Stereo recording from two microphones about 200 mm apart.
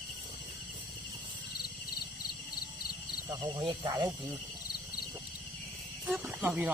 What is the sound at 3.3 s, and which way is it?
Speech, 25° right (ahead or behind).